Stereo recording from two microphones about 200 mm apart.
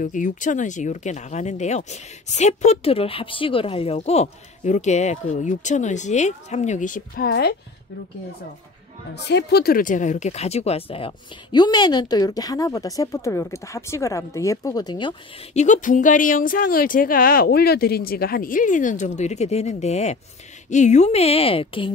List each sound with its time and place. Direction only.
0.0 s speech: 40° left (ahead or behind)
9.1 s speech: 55° left (ahead or behind); by 15.1 s 20° left (ahead or behind)
15.5 s speech: 35° left (ahead or behind)